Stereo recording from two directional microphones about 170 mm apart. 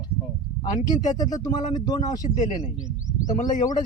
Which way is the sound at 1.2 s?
25° left (ahead or behind).